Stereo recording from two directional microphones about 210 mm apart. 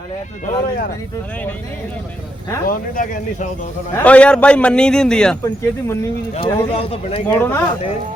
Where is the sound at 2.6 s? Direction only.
40° left (ahead or behind).